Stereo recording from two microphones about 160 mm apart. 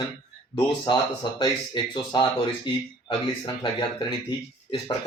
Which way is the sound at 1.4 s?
30° left (ahead or behind).